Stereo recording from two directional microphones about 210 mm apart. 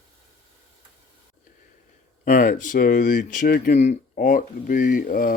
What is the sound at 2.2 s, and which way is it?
Speech, 40° left (ahead or behind).